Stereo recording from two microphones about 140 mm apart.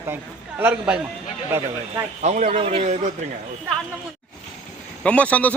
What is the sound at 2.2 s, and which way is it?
Speech, 55° right (ahead or behind).